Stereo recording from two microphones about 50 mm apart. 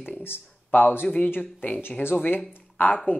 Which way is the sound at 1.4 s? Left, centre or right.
Left.